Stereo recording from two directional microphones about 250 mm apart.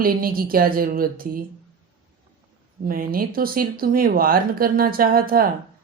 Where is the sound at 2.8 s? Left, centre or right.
Right.